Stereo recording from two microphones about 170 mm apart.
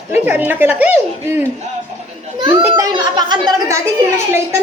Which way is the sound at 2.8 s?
25° right (ahead or behind).